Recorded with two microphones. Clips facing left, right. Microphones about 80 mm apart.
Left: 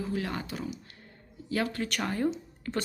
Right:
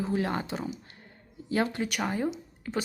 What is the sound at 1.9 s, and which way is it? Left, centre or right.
Speech, centre.